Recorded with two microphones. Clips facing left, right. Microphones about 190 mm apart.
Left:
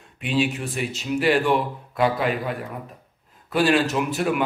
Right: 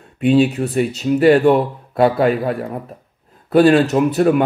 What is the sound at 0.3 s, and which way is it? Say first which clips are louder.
A man's voice: right 9 dB; 40° right (ahead or behind).